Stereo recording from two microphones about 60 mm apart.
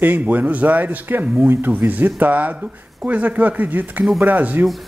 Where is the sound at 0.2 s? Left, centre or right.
Right.